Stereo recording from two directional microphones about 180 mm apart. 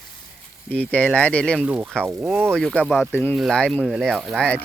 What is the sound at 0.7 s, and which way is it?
Speech, 10° left (ahead or behind).